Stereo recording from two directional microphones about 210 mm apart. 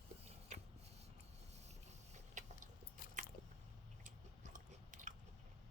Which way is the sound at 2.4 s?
35° right (ahead or behind).